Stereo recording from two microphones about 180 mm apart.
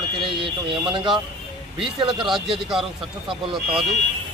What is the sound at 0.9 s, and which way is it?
Speech, 25° right (ahead or behind).